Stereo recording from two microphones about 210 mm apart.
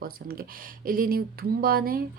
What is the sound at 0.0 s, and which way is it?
Speech, 45° right (ahead or behind).